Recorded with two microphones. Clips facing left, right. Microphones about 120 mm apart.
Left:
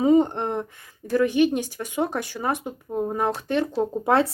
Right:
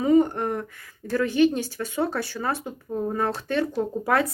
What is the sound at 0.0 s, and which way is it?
A woman's voice, 25° left (ahead or behind).